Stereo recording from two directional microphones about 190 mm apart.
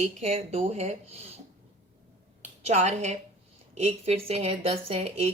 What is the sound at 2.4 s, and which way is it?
A woman's voice, 35° right (ahead or behind).